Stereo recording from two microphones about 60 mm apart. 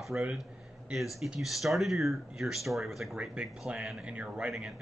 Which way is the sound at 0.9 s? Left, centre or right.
Centre.